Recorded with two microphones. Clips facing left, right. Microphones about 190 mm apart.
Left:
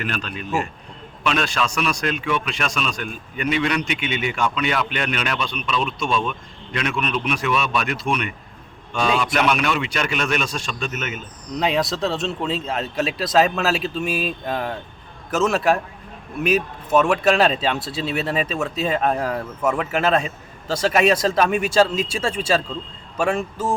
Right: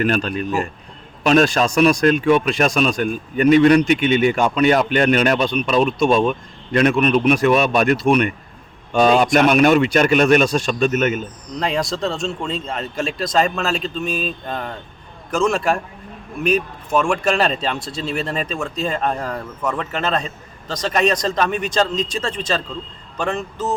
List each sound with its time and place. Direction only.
0.0 s a man's voice: 45° right (ahead or behind)
8.9 s a man's voice: 45° right (ahead or behind)
11.5 s speech: centre (ahead or behind)